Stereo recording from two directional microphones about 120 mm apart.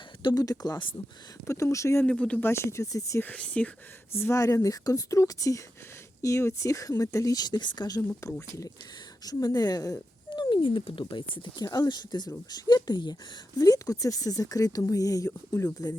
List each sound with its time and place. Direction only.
0.2 s speech: 35° left (ahead or behind)
2.0 s speech: 10° left (ahead or behind)
2.5 s speech: 20° left (ahead or behind)
3.2 s speech: 10° left (ahead or behind)
4.1 s speech: 20° left (ahead or behind)